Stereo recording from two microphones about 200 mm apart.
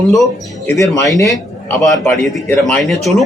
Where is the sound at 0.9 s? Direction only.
15° left (ahead or behind).